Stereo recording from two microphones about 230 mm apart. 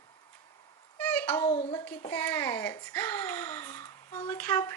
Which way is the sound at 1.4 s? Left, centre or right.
Left.